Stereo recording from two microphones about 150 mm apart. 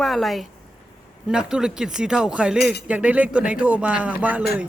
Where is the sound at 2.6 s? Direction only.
90° left.